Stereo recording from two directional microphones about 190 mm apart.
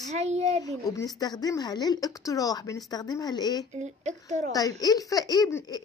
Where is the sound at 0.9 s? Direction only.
20° left (ahead or behind).